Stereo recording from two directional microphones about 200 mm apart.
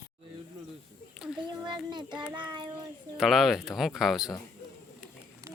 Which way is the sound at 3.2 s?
Centre (ahead or behind).